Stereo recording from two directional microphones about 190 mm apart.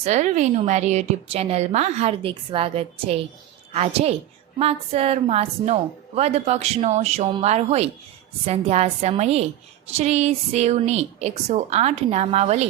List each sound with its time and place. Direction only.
0.0 s a woman's voice: 35° right (ahead or behind)